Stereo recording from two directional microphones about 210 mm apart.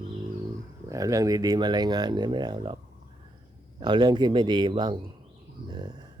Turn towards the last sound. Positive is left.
turn(degrees=-20)  # may be behind; listen again after turning